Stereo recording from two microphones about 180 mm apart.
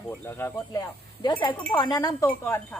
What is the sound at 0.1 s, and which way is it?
Speech, 10° left (ahead or behind).